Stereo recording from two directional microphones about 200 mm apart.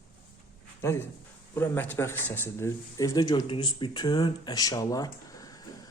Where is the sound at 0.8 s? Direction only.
15° left (ahead or behind).